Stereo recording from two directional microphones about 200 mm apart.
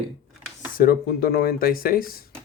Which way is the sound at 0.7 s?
50° left (ahead or behind).